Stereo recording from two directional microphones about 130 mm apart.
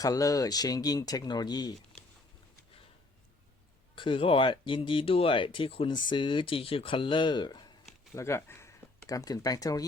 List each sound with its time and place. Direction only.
0.0 s speech: 25° left (ahead or behind)
3.9 s speech: 40° left (ahead or behind)
8.1 s speech: 20° left (ahead or behind)